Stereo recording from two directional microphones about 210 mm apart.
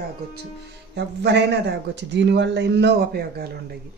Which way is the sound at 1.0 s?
55° right (ahead or behind).